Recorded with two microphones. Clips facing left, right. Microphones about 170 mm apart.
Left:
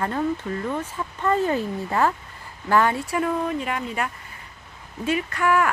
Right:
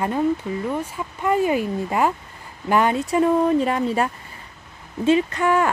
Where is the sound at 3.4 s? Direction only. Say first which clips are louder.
Right 8 dB; 35° right (ahead or behind).